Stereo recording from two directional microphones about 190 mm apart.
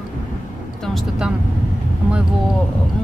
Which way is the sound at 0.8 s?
Centre (ahead or behind).